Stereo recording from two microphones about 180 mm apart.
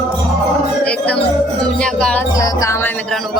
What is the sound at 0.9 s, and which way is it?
Music, 5° left (ahead or behind).